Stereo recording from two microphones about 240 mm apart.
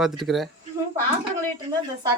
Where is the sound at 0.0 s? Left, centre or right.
Centre.